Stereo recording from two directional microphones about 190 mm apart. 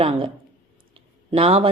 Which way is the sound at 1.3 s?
30° right (ahead or behind).